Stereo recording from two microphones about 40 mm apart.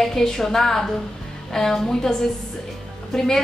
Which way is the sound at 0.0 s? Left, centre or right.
Centre.